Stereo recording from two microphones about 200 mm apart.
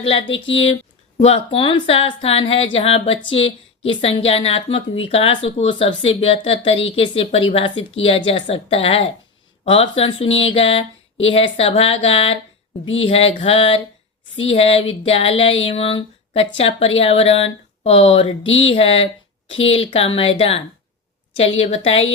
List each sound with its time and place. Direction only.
0.0 s speech: 25° left (ahead or behind)